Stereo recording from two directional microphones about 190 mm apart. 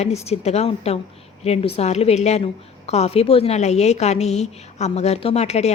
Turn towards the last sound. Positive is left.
turn(degrees=35)  # may be behind; listen again after turning